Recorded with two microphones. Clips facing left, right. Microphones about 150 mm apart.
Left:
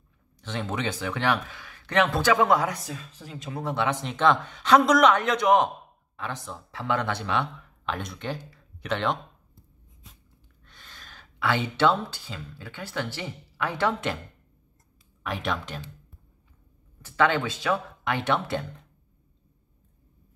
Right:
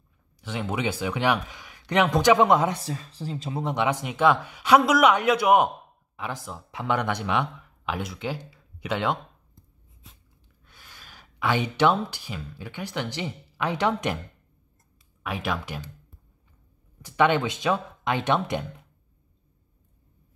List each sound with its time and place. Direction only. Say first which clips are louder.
0.4 s a man's voice: right 2 dB; 10° right (ahead or behind)
10.6 s speech: left 1 dB; 10° right (ahead or behind)
15.2 s a man's voice: even; 5° right (ahead or behind)
17.0 s speech: right 2 dB; 20° right (ahead or behind)